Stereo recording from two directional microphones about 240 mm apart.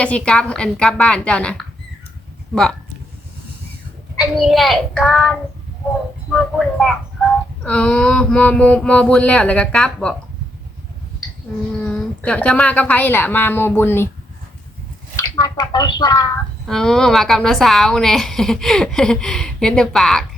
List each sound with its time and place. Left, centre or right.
0.0 s a woman's voice: centre
4.2 s a woman's voice: centre
11.9 s a woman's voice: centre
15.4 s a woman's voice: centre
16.6 s a woman's voice: centre